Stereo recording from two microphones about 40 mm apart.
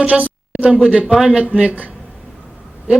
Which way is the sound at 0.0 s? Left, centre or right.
Right.